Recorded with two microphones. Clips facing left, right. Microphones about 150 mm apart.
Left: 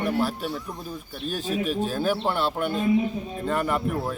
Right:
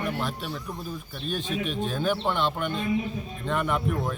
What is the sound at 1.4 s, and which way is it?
Speech, 40° left (ahead or behind).